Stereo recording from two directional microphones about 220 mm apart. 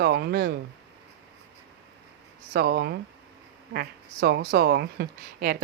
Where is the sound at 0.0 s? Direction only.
50° right (ahead or behind).